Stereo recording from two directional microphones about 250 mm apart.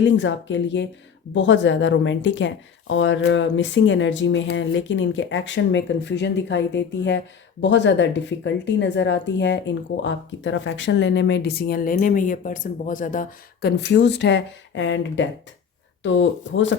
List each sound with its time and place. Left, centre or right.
0.0 s speech: left